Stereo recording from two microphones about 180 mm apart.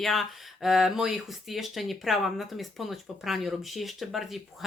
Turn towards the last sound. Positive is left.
turn(degrees=0)  # may be behind; listen again after turning